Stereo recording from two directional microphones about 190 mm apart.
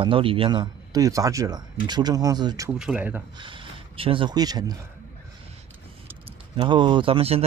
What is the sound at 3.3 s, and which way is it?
Speech, 25° right (ahead or behind).